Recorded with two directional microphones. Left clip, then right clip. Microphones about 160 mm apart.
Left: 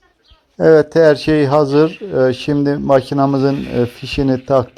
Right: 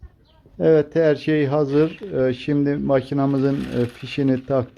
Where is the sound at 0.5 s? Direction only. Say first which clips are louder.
Left 7 dB; 20° left (ahead or behind).